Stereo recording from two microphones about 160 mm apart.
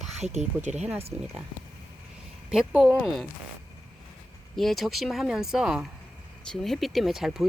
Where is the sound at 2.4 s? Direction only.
5° right (ahead or behind).